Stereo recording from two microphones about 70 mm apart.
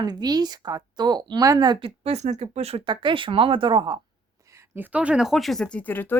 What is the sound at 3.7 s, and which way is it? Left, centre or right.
Speech, right.